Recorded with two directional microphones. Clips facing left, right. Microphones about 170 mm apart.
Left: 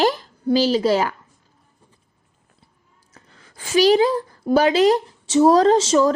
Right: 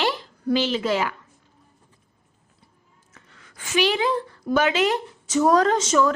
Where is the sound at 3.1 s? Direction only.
30° left (ahead or behind).